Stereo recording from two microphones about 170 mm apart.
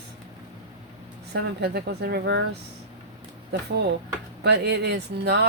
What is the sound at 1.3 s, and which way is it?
Speech, 75° right (ahead or behind).